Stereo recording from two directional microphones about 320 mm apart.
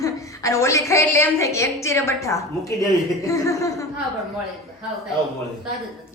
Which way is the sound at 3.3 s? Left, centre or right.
Centre.